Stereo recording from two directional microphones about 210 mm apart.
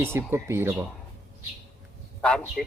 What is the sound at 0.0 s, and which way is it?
Speech, 10° right (ahead or behind).